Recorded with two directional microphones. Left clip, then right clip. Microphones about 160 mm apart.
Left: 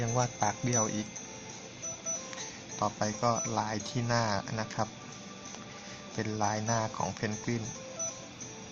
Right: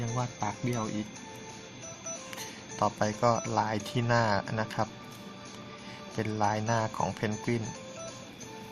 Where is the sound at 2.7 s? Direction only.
10° right (ahead or behind).